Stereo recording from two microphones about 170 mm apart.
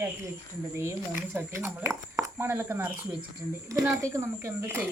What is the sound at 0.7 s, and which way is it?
Speech, 15° right (ahead or behind).